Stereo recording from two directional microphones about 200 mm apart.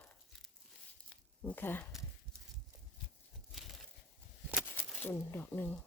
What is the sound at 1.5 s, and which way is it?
Speech, 10° left (ahead or behind).